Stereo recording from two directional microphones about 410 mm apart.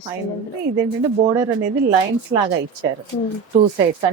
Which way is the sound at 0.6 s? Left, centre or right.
Right.